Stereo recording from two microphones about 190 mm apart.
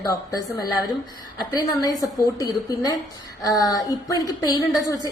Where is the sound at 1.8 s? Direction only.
20° left (ahead or behind).